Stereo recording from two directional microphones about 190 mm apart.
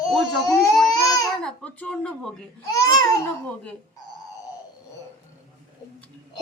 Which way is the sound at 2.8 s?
20° left (ahead or behind).